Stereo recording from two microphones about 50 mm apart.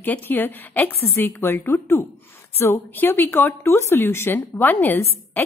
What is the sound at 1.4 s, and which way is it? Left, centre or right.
Speech, left.